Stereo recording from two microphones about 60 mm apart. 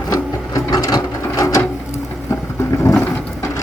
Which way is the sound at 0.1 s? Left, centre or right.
Left.